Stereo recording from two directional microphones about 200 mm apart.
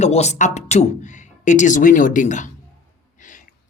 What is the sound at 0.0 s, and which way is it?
Speech, 35° left (ahead or behind).